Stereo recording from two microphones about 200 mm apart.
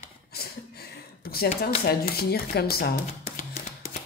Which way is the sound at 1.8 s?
50° left (ahead or behind).